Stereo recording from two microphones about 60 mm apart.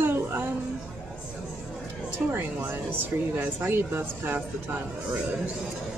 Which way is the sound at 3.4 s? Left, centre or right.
Right.